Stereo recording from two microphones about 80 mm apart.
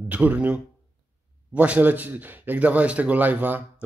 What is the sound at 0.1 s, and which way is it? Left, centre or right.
Speech, centre.